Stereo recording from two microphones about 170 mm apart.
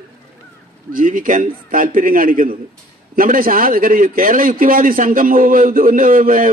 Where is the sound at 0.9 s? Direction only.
50° right (ahead or behind).